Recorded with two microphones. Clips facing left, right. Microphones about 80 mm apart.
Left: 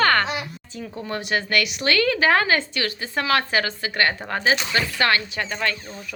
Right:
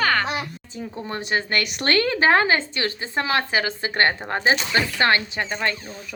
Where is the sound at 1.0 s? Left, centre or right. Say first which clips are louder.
Even; right.